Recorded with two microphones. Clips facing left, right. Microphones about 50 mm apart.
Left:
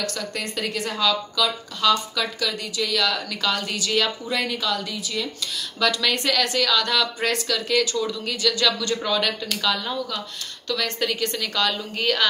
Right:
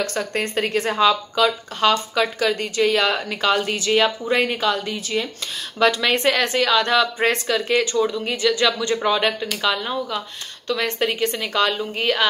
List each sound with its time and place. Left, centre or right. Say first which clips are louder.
0.0 s speech: right 5 dB; right